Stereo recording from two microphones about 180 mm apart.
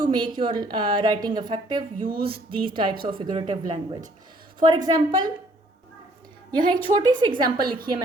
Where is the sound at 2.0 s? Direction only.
55° right (ahead or behind).